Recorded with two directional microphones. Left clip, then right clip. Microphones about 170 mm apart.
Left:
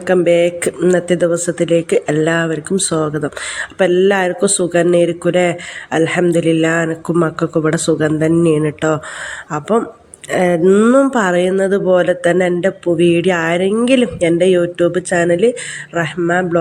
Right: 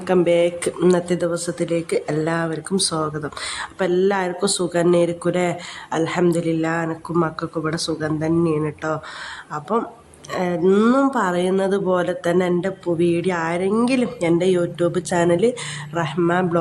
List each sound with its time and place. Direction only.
0.1 s speech: 5° left (ahead or behind)
10.7 s speech: 5° left (ahead or behind)